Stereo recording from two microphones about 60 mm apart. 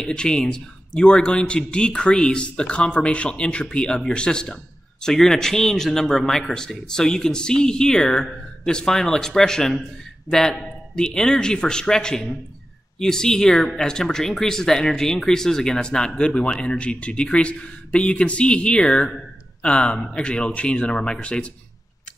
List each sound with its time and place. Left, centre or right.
0.0 s speech: centre